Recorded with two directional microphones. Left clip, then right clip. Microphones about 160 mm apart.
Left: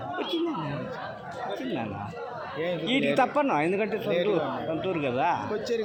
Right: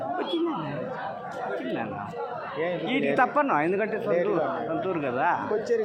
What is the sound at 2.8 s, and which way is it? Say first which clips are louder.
Speech: even; 35° left (ahead or behind).